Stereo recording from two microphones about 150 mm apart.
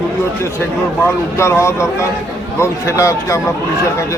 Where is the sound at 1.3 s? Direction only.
20° left (ahead or behind).